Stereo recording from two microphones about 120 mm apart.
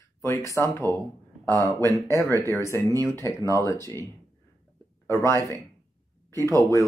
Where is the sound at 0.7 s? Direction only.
20° left (ahead or behind).